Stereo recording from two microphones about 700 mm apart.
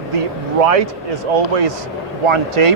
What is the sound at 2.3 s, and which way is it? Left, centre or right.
Speech, right.